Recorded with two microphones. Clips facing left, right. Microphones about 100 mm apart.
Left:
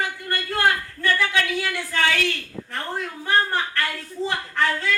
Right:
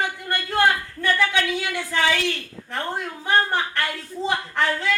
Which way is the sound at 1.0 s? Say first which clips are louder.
Right 1 dB; 20° right (ahead or behind).